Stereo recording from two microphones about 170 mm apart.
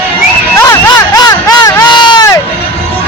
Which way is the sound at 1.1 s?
25° left (ahead or behind).